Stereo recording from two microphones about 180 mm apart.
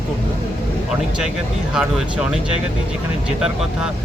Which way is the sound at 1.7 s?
5° right (ahead or behind).